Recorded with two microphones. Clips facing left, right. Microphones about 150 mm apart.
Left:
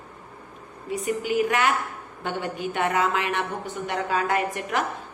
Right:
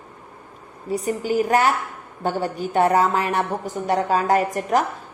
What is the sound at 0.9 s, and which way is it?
A woman's voice, 35° right (ahead or behind).